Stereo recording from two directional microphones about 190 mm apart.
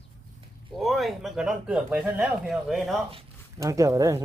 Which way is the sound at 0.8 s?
Centre (ahead or behind).